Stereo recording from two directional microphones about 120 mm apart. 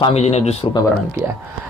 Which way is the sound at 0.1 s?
65° left (ahead or behind).